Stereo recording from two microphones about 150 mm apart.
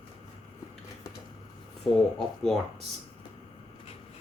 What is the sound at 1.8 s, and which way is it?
Speech, centre (ahead or behind).